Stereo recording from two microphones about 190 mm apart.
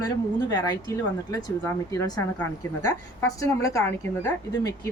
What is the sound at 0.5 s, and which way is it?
A woman's voice, 20° left (ahead or behind).